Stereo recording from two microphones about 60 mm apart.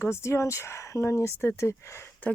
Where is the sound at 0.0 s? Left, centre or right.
Left.